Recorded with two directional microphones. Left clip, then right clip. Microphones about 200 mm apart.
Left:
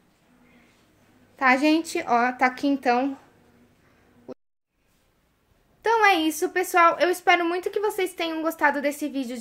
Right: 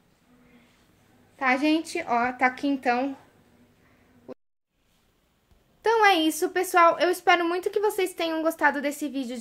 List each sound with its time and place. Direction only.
1.3 s speech: 15° left (ahead or behind)
4.3 s a sound: 15° left (ahead or behind)
5.8 s a woman's voice: 10° right (ahead or behind)